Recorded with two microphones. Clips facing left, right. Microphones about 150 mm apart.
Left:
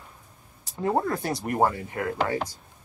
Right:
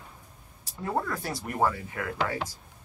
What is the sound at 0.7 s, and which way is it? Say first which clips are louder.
Speech: left 5 dB; 30° left (ahead or behind).